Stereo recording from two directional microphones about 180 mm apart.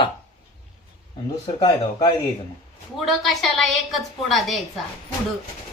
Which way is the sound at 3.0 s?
Centre (ahead or behind).